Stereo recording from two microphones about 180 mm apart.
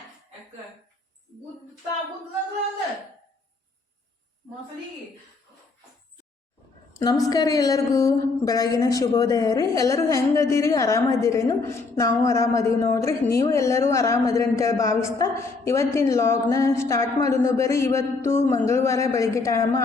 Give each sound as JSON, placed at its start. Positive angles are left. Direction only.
{"t": 7.0, "sound": "a man's voice", "side_deg": 20}